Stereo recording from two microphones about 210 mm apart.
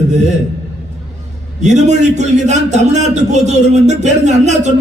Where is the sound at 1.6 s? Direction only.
35° right (ahead or behind).